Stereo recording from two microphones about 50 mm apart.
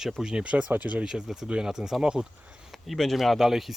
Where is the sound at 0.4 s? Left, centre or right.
Right.